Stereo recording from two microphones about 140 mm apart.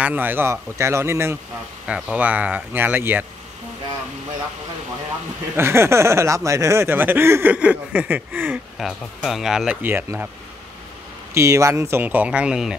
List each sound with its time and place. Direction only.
0.0 s speech: 10° right (ahead or behind)
1.9 s speech: 5° right (ahead or behind)
5.6 s speech: 20° right (ahead or behind)
8.7 s speech: centre (ahead or behind)
11.3 s speech: 20° right (ahead or behind)